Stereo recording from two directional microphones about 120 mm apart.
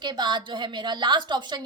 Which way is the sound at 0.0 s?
40° right (ahead or behind).